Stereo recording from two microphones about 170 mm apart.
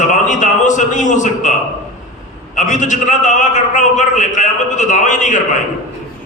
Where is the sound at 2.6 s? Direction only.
45° left (ahead or behind).